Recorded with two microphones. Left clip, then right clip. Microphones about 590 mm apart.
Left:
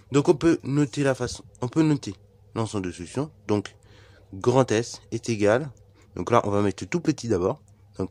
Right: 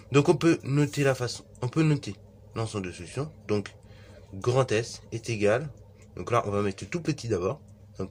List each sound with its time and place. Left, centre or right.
0.1 s speech: left